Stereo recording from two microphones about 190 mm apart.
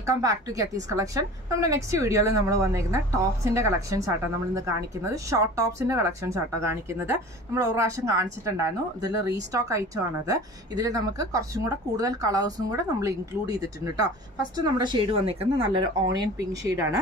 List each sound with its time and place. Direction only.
0.0 s speech: 15° right (ahead or behind)